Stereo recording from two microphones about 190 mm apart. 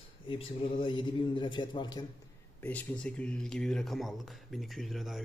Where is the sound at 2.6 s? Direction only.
10° left (ahead or behind).